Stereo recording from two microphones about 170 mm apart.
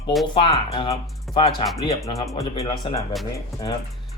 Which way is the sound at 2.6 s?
35° left (ahead or behind).